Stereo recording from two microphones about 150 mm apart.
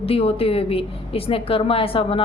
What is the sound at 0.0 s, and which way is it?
A woman's voice, 40° left (ahead or behind).